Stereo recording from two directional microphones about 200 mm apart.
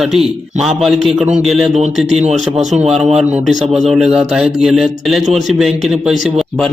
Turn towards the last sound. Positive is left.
turn(degrees=-5)  # may be behind; listen again after turning